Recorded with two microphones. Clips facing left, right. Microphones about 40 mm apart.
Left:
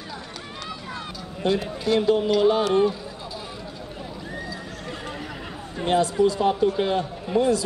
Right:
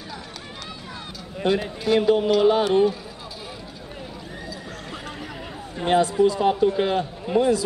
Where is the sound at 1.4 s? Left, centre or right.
Right.